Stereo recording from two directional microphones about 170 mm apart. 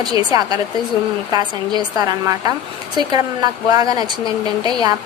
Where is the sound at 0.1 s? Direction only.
25° right (ahead or behind).